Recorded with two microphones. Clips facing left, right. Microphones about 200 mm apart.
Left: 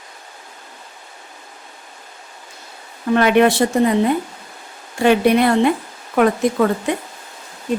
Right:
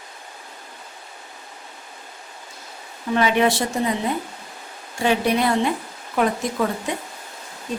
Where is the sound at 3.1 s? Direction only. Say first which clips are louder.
Left 5 dB; 60° left (ahead or behind).